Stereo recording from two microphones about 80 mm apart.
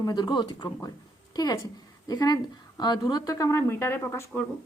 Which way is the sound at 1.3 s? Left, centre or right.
Left.